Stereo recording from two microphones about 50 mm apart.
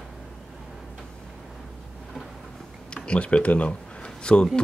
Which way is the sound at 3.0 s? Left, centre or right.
Left.